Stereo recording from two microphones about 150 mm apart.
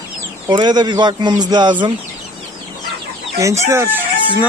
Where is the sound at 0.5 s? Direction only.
30° right (ahead or behind).